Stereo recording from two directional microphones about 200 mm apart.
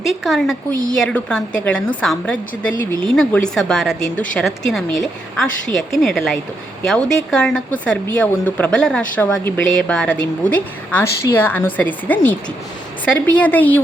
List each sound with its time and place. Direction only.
0.0 s a woman's voice: centre (ahead or behind)